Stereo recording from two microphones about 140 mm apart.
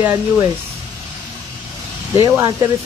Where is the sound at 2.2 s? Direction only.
25° right (ahead or behind).